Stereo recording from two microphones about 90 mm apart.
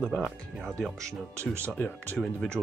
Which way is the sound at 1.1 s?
30° right (ahead or behind).